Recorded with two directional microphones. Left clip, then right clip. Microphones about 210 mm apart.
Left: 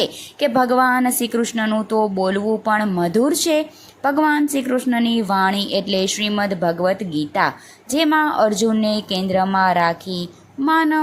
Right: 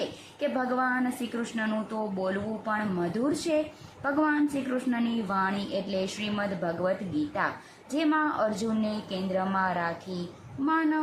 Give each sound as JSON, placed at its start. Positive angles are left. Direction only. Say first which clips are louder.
{"t": 0.3, "sound": "a woman's voice", "louder": "left 12 dB", "side_deg": 25}
{"t": 7.9, "sound": "a woman's voice", "louder": "left 10 dB", "side_deg": 25}